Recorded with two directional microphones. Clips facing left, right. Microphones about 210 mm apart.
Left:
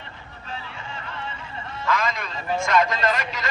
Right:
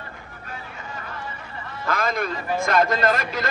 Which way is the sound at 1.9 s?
50° right (ahead or behind).